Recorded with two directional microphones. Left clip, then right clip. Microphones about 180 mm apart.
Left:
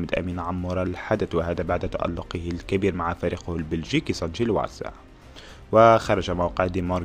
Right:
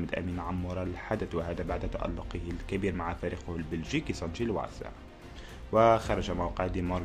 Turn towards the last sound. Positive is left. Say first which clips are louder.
# left 8 dB
turn(degrees=35)  # may be behind; listen again after turning